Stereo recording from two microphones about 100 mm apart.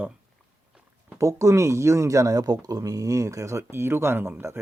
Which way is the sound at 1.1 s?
30° right (ahead or behind).